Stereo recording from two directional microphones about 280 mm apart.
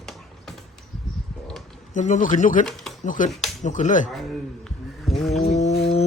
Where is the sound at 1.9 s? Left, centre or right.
Left.